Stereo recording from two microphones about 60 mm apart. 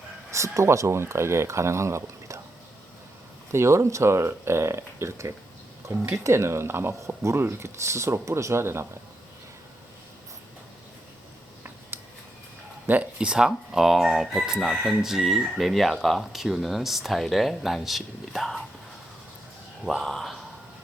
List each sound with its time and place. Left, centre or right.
0.3 s speech: right
3.5 s speech: right
11.9 s a sound: right
13.1 s speech: centre
19.8 s speech: centre